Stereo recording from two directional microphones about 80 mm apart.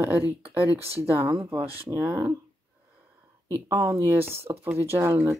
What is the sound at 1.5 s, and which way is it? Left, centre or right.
Speech, right.